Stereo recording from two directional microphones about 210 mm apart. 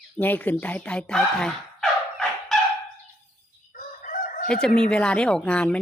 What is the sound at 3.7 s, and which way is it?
Chicken, 40° left (ahead or behind).